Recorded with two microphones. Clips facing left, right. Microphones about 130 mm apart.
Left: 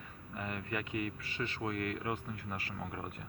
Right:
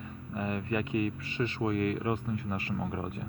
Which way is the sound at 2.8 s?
20° right (ahead or behind).